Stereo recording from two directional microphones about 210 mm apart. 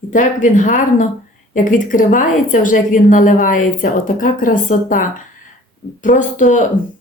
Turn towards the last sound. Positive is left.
turn(degrees=35)  # may be behind; listen again after turning